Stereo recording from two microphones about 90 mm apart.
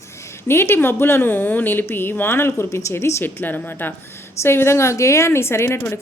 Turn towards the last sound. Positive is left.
turn(degrees=25)  # may be behind; listen again after turning